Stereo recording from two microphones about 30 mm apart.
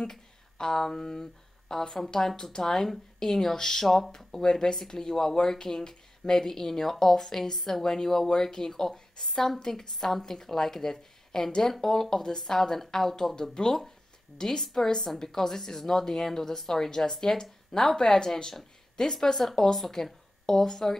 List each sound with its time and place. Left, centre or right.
0.0 s speech: centre